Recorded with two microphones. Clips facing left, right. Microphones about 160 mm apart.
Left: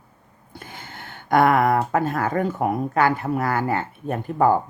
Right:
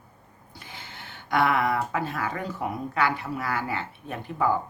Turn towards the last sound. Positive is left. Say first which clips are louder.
# left 7 dB
turn(degrees=50)  # may be behind; listen again after turning